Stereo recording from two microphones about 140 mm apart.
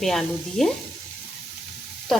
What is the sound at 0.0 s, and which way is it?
Speech, centre (ahead or behind).